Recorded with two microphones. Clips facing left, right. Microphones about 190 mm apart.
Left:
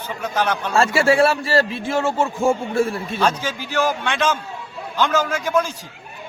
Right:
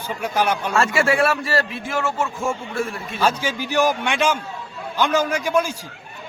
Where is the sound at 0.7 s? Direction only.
30° left (ahead or behind).